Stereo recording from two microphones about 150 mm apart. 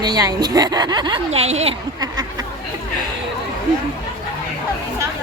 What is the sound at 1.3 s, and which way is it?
Speech, 45° right (ahead or behind).